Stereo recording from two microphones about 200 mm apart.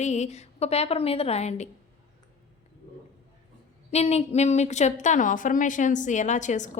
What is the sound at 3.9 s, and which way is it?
A woman's voice, 35° left (ahead or behind).